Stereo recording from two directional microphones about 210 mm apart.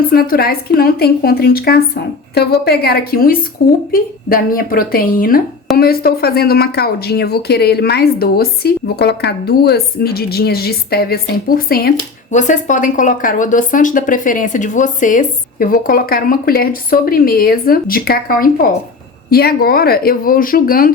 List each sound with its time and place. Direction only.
0.1 s speech: 45° left (ahead or behind)